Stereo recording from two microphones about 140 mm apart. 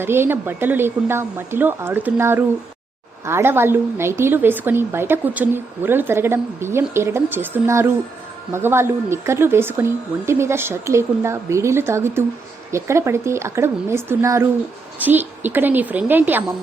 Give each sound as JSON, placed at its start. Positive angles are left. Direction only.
{"t": 0.0, "sound": "a woman's voice", "side_deg": -15}